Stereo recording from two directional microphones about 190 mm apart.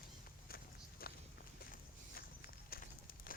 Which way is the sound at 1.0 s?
55° left (ahead or behind).